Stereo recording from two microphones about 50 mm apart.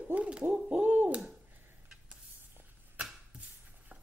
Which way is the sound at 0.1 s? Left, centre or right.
Right.